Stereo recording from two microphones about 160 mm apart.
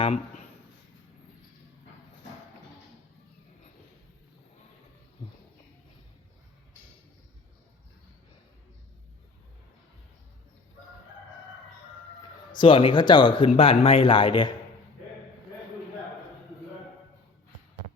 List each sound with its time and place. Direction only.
0.0 s speech: 40° left (ahead or behind)
12.5 s speech: 35° left (ahead or behind)